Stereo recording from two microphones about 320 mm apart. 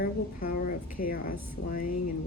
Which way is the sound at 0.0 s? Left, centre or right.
Left.